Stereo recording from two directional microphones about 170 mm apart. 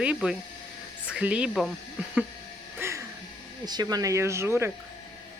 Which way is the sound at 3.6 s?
25° right (ahead or behind).